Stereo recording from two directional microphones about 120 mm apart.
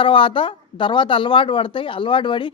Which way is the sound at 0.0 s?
45° left (ahead or behind).